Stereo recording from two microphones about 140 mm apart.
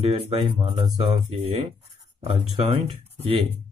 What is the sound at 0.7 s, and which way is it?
Speech, 35° right (ahead or behind).